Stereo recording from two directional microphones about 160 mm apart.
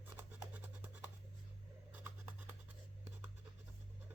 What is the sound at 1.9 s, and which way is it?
Scissors, 10° right (ahead or behind).